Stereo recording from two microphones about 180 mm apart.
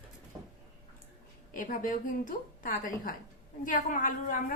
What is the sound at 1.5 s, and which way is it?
A woman's voice, 45° left (ahead or behind).